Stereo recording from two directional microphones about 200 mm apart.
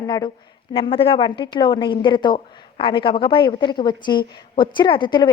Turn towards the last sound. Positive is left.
turn(degrees=25)  # may be behind; listen again after turning